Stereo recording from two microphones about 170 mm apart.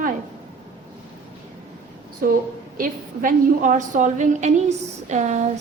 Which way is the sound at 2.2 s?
60° right (ahead or behind).